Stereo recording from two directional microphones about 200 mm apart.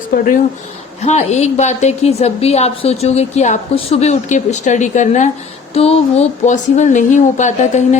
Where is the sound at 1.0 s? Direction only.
35° left (ahead or behind).